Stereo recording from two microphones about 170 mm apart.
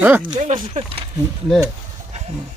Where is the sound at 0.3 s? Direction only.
45° right (ahead or behind).